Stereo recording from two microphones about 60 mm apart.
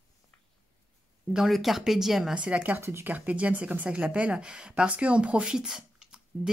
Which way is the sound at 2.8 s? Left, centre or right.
Right.